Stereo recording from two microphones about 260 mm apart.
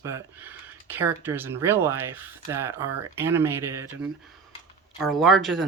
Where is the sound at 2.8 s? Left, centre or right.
Right.